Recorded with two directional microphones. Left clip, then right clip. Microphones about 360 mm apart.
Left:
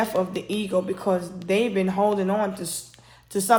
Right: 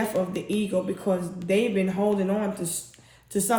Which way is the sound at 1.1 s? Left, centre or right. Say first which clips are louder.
Left 3 dB; left.